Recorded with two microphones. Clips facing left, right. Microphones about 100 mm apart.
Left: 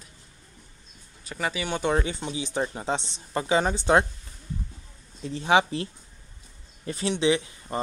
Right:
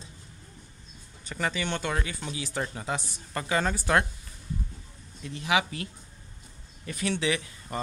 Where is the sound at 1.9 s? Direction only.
25° left (ahead or behind).